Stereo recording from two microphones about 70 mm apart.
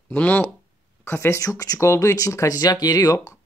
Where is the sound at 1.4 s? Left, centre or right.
Left.